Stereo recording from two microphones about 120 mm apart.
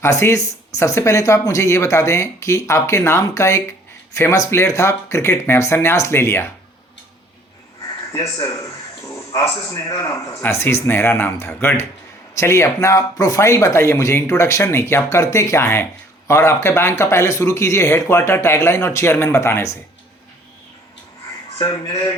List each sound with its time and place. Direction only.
0.0 s speech: 20° left (ahead or behind)
8.1 s speech: 25° left (ahead or behind)
21.6 s speech: 30° left (ahead or behind)